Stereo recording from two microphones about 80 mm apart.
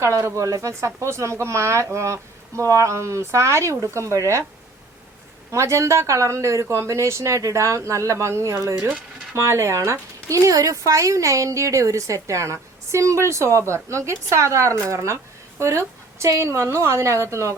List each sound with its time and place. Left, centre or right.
0.0 s speech: right
5.5 s speech: right